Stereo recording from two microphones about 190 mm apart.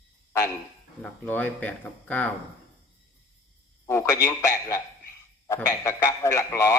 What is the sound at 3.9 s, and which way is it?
A man's voice, 15° left (ahead or behind).